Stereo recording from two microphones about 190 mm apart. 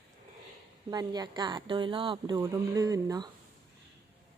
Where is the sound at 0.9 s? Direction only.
20° right (ahead or behind).